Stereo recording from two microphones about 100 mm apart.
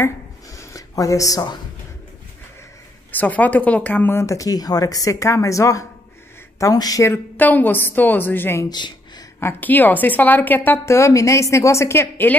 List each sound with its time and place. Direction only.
0.0 s a sound: 35° left (ahead or behind)
3.1 s speech: 15° left (ahead or behind); by 7.2 s 35° left (ahead or behind)
7.3 s a woman's voice: 20° left (ahead or behind)
8.6 s speech: 45° left (ahead or behind)
9.4 s a woman's voice: 20° left (ahead or behind)